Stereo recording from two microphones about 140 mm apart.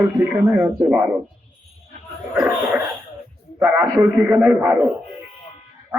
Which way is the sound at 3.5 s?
15° right (ahead or behind).